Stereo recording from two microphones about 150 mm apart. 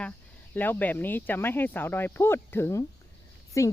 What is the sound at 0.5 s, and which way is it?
Speech, 10° left (ahead or behind).